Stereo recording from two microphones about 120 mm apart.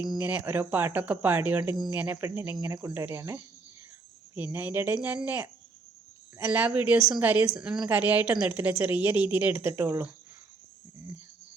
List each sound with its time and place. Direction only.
0.2 s a woman's voice: 15° right (ahead or behind)